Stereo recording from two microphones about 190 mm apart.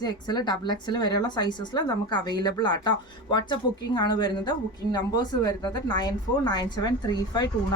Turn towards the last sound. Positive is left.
turn(degrees=20)  # may be behind; listen again after turning